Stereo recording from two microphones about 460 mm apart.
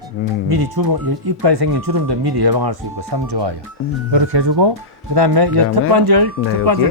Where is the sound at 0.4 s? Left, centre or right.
Right.